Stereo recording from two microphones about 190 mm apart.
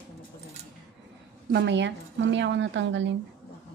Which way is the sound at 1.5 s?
70° right (ahead or behind).